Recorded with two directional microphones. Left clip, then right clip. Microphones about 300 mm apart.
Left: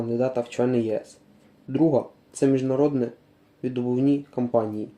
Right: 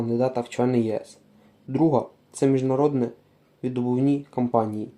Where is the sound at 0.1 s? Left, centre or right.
Centre.